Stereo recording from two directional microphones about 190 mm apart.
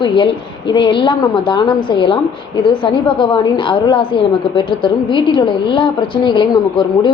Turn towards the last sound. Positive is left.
turn(degrees=25)  # may be behind; listen again after turning